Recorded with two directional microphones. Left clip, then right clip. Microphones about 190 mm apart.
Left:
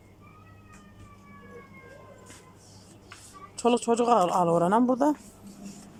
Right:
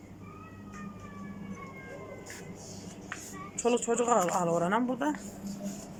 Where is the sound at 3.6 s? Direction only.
15° left (ahead or behind).